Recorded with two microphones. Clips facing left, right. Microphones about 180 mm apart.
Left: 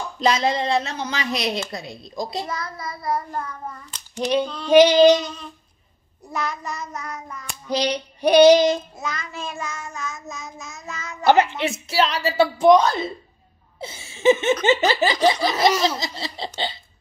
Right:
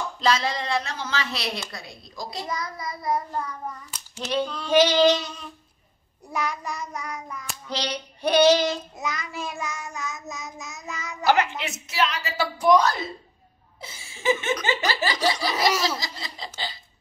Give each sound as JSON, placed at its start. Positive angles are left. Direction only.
{"t": 0.2, "sound": "a woman's voice", "side_deg": 20}
{"t": 2.4, "sound": "child singing", "side_deg": -15}
{"t": 4.2, "sound": "female singing", "side_deg": 15}
{"t": 6.3, "sound": "child singing", "side_deg": -10}
{"t": 7.6, "sound": "female singing", "side_deg": 15}
{"t": 9.0, "sound": "child singing", "side_deg": -15}
{"t": 11.2, "sound": "a woman's voice", "side_deg": 25}